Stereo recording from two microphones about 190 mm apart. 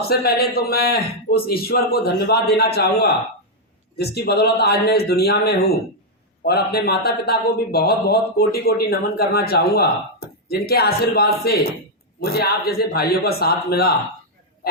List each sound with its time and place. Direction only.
0.0 s speech: 55° left (ahead or behind)